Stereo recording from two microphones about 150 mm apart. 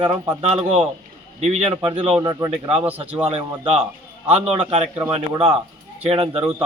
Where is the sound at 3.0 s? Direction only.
10° right (ahead or behind).